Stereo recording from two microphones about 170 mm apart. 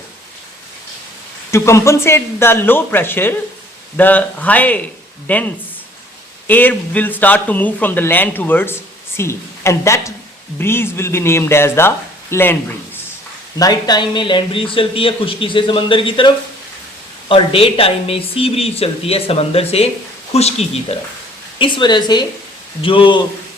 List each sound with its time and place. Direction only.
1.5 s speech: 15° left (ahead or behind)
6.5 s speech: 10° left (ahead or behind)
13.6 s speech: 25° left (ahead or behind); by 20.7 s 40° left (ahead or behind)
21.6 s speech: 25° left (ahead or behind)